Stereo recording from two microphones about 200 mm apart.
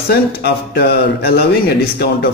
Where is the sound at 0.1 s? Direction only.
55° left (ahead or behind).